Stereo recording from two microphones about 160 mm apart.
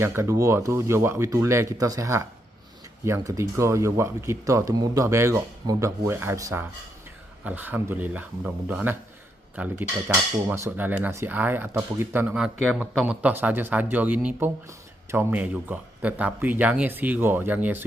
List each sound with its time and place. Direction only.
0.0 s speech: 15° right (ahead or behind)